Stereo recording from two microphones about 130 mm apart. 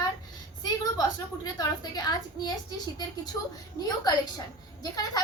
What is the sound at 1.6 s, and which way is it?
Speech, 30° left (ahead or behind).